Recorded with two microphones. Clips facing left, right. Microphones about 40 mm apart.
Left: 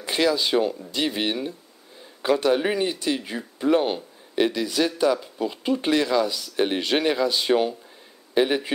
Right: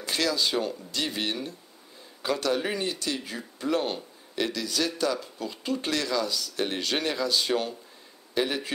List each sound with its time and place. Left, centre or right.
0.0 s speech: centre